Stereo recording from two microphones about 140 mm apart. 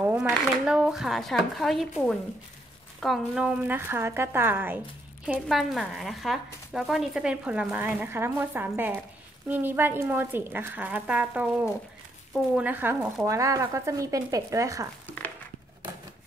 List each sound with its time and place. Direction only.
0.0 s speech: 10° right (ahead or behind)
5.2 s speech: 5° right (ahead or behind); by 14.9 s 25° right (ahead or behind)